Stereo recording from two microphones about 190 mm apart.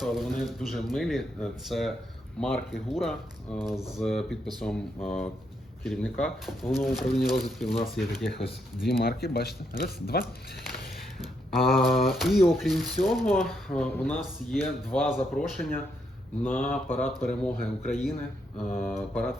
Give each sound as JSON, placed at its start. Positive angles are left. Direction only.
{"t": 0.0, "sound": "speech", "side_deg": 0}
{"t": 8.9, "sound": "speech", "side_deg": 55}
{"t": 11.6, "sound": "speech", "side_deg": 0}